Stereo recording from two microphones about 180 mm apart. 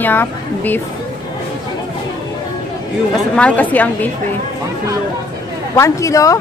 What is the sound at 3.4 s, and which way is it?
Speech, 10° left (ahead or behind).